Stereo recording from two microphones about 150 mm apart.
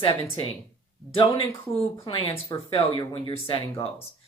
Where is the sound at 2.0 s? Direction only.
35° left (ahead or behind).